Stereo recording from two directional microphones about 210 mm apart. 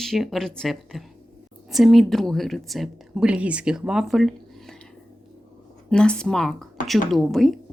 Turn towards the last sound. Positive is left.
turn(degrees=0)  # may be behind; listen again after turning